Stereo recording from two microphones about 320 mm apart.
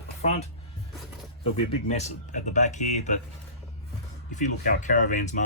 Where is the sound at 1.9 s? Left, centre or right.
Left.